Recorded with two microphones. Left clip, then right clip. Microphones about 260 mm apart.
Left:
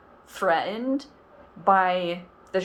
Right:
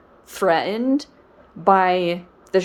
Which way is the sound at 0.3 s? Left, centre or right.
Right.